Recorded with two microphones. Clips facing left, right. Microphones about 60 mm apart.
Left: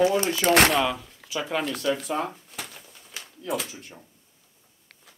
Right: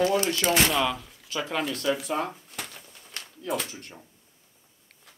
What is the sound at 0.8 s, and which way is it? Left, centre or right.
Speech, centre.